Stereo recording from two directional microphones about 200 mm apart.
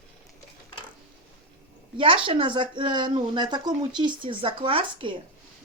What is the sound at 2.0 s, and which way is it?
Speech, 25° right (ahead or behind).